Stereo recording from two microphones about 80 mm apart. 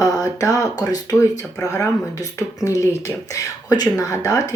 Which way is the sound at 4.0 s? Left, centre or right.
Left.